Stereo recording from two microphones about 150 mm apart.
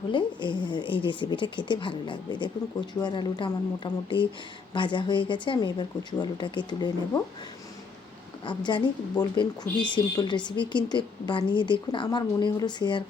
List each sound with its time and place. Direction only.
0.1 s speech: 30° left (ahead or behind)
8.4 s speech: 30° left (ahead or behind)